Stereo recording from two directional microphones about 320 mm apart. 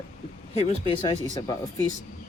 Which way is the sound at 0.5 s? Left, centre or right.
Centre.